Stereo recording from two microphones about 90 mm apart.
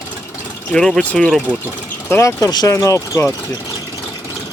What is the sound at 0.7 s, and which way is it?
Speech, 5° left (ahead or behind).